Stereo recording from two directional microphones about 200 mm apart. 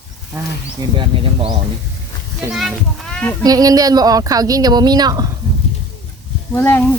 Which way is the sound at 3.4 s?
20° right (ahead or behind).